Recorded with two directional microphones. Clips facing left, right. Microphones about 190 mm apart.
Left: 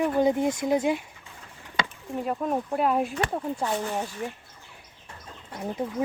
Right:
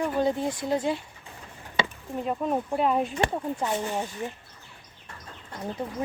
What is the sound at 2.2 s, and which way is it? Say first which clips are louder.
Speech: even; centre (ahead or behind).